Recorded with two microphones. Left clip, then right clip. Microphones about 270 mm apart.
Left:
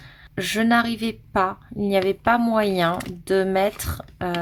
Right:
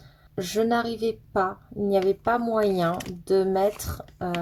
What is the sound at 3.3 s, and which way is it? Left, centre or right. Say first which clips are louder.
Speech: left 2 dB; left.